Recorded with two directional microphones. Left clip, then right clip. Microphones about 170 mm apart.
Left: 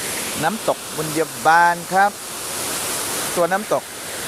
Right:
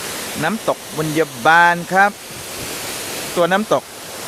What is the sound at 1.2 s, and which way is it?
Speech, 25° right (ahead or behind).